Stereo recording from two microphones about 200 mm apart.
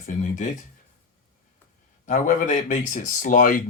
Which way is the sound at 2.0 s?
40° left (ahead or behind).